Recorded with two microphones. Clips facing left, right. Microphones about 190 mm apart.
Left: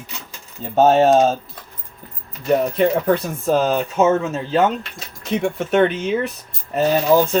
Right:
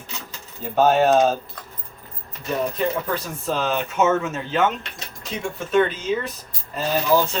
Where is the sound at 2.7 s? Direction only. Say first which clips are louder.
Left 7 dB; 60° left (ahead or behind); by 4.7 s 35° left (ahead or behind).